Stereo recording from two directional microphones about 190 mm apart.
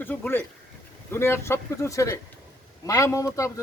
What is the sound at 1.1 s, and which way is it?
A man's voice, 15° left (ahead or behind).